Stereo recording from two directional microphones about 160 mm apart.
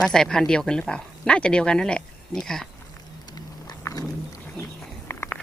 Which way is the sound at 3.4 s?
25° left (ahead or behind).